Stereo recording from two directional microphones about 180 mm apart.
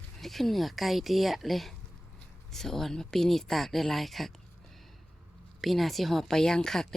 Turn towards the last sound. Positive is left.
turn(degrees=5)  # may be behind; listen again after turning